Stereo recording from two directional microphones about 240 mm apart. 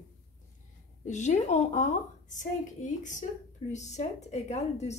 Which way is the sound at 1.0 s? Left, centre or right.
Left.